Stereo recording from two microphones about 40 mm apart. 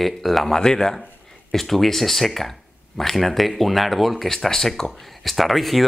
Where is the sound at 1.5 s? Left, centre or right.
Centre.